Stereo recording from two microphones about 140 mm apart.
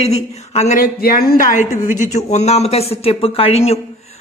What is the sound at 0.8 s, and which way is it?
Speech, 90° left.